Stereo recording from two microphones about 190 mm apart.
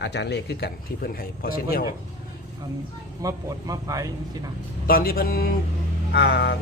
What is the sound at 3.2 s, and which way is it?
Speech, 20° right (ahead or behind).